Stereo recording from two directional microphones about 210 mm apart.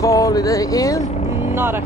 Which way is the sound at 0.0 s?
15° left (ahead or behind).